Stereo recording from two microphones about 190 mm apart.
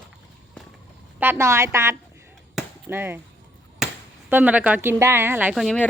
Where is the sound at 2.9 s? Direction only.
10° right (ahead or behind).